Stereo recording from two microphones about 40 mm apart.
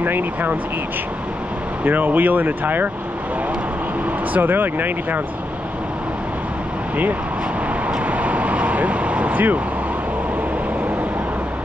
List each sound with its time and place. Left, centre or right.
0.0 s speech: right
1.9 s speech: right
4.4 s speech: right
8.1 s vehicle: right